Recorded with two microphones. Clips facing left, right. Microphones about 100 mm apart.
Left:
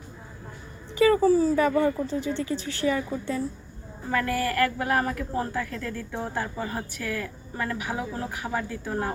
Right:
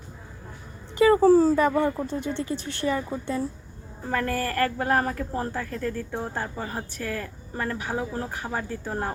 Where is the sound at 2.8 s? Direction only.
40° right (ahead or behind).